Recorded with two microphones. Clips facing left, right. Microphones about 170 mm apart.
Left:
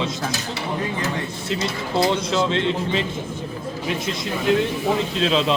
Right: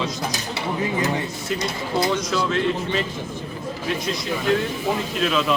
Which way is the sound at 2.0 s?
25° left (ahead or behind).